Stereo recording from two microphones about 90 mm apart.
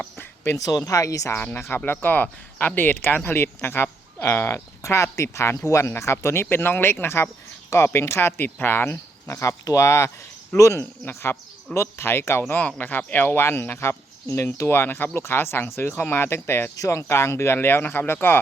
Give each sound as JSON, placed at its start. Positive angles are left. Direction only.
{"t": 0.2, "sound": "a sound", "side_deg": 30}
{"t": 0.9, "sound": "speech", "side_deg": 40}
{"t": 1.4, "sound": "speech", "side_deg": 20}